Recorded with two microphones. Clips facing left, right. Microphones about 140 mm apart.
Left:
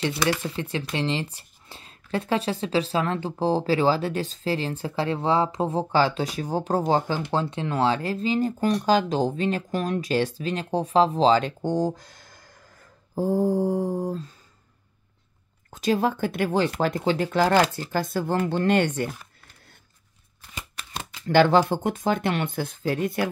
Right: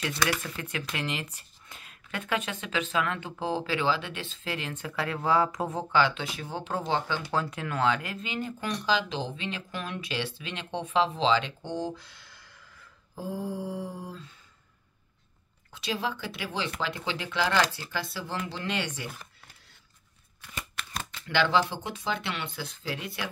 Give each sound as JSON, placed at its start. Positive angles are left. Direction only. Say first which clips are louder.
{"t": 0.2, "sound": "speech", "louder": "left 5 dB", "side_deg": 30}
{"t": 7.2, "sound": "speech", "louder": "left 5 dB", "side_deg": 25}
{"t": 15.7, "sound": "speech", "louder": "left 9 dB", "side_deg": 45}
{"t": 21.3, "sound": "speech", "louder": "left 8 dB", "side_deg": 45}